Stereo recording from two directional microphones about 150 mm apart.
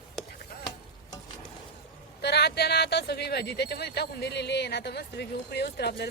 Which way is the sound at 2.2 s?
90° left.